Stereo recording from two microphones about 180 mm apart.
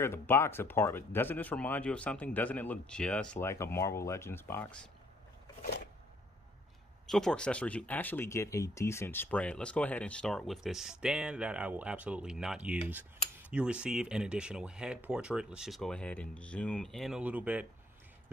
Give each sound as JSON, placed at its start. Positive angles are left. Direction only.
{"t": 0.0, "sound": "speech", "side_deg": 15}
{"t": 7.1, "sound": "speech", "side_deg": 5}